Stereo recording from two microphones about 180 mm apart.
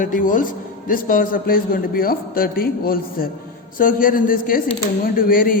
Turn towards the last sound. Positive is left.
turn(degrees=50)  # may be behind; listen again after turning